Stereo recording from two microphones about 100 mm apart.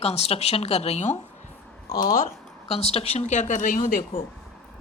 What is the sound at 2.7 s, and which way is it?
Speech, 85° left.